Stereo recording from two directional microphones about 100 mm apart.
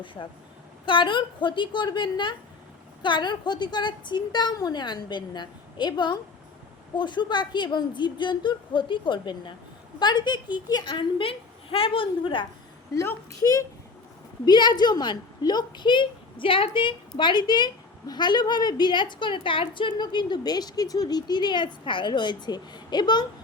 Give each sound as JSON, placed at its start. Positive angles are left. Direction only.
{"t": 0.0, "sound": "a child's voice", "side_deg": 55}
{"t": 13.4, "sound": "a child's voice", "side_deg": 35}
{"t": 14.4, "sound": "a woman's voice", "side_deg": 45}